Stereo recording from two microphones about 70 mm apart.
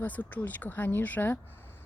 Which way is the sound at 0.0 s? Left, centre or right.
Left.